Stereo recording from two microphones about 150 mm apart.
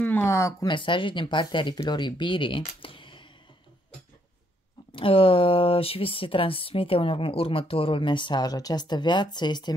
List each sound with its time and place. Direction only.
0.0 s speech: 15° left (ahead or behind)
0.7 s speech: 35° left (ahead or behind)
4.9 s speech: 40° left (ahead or behind)